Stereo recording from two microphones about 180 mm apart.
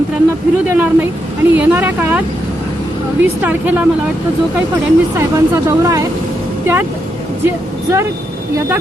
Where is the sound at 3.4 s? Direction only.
10° right (ahead or behind).